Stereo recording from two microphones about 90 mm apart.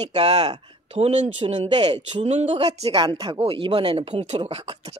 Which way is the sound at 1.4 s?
75° right (ahead or behind).